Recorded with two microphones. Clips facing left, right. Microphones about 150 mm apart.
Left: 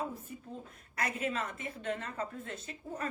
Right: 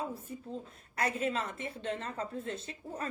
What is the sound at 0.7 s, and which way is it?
A woman's voice, 30° right (ahead or behind).